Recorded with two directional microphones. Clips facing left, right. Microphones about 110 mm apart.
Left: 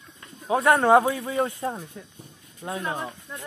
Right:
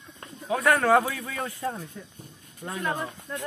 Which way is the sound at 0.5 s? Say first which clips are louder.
Left 3 dB; 25° left (ahead or behind).